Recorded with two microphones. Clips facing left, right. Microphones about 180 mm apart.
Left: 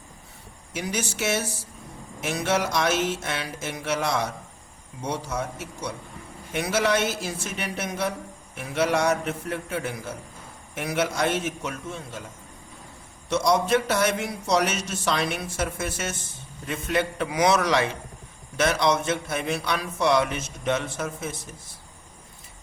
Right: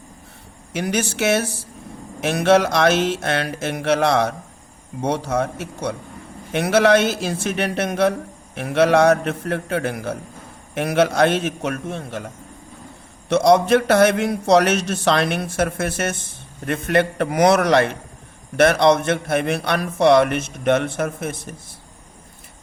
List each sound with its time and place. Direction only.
0.7 s speech: 70° right (ahead or behind)
13.3 s speech: 70° right (ahead or behind)